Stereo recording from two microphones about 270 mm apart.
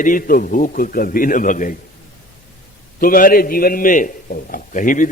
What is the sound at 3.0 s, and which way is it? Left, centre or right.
A man's voice, left.